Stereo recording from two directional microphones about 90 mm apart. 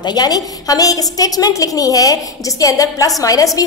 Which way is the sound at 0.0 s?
50° left (ahead or behind).